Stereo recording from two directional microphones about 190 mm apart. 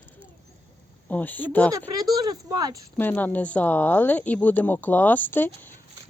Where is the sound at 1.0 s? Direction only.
10° left (ahead or behind).